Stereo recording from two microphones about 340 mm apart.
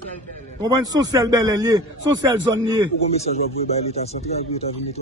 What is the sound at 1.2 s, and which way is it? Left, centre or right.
Speech, centre.